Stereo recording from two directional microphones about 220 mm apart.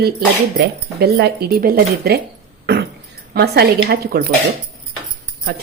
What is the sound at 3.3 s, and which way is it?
Speech, 45° right (ahead or behind).